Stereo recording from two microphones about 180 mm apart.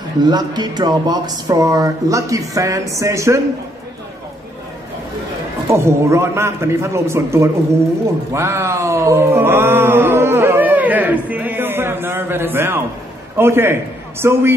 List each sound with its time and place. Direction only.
0.2 s speech: 25° right (ahead or behind)
5.7 s a man's voice: 15° right (ahead or behind)
8.3 s a sound: 15° right (ahead or behind)
13.4 s a man's voice: 15° right (ahead or behind)